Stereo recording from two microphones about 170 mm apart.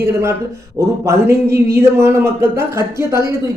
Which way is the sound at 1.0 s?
15° right (ahead or behind).